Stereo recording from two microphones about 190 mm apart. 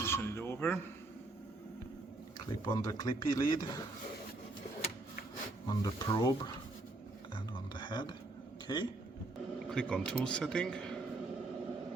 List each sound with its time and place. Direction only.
0.0 s a sound: 15° left (ahead or behind)
2.5 s speech: 20° left (ahead or behind)
5.6 s speech: 20° left (ahead or behind)
7.3 s a sound: 25° left (ahead or behind)
8.6 s a man's voice: 20° left (ahead or behind)
9.6 s a man's voice: 5° left (ahead or behind)